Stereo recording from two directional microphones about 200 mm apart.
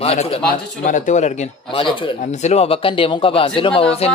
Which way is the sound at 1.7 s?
25° left (ahead or behind).